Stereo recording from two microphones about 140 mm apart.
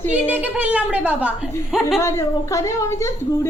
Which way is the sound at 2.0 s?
20° left (ahead or behind).